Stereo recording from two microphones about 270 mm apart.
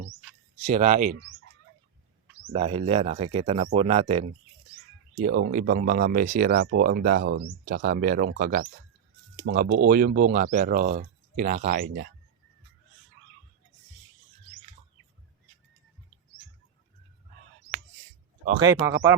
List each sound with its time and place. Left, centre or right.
0.6 s speech: right
2.5 s speech: right
18.6 s speech: centre